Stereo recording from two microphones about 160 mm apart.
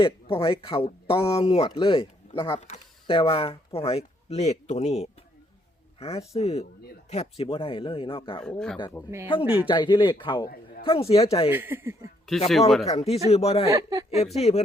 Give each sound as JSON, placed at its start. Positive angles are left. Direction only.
{"t": 0.0, "sound": "speech", "side_deg": 35}
{"t": 8.4, "sound": "speech", "side_deg": 5}
{"t": 8.8, "sound": "speech", "side_deg": 20}
{"t": 9.2, "sound": "speech", "side_deg": 35}
{"t": 11.5, "sound": "speech", "side_deg": -15}
{"t": 12.3, "sound": "speech", "side_deg": 0}
{"t": 12.8, "sound": "speech", "side_deg": 40}
{"t": 13.7, "sound": "speech", "side_deg": -20}
{"t": 14.3, "sound": "speech", "side_deg": 40}